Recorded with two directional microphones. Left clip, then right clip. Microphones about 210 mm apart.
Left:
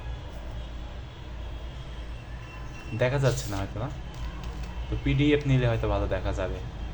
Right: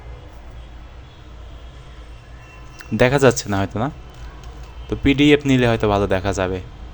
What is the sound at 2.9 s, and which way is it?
Speech, 55° right (ahead or behind).